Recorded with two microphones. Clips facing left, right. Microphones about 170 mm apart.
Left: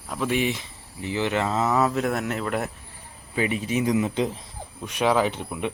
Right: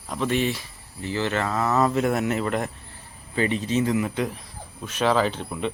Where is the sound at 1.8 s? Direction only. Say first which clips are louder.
Right 2 dB; centre (ahead or behind).